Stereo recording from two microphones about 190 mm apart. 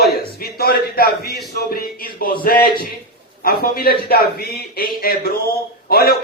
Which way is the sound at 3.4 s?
55° left (ahead or behind).